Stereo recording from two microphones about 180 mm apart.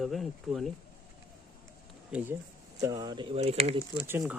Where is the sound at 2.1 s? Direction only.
5° right (ahead or behind).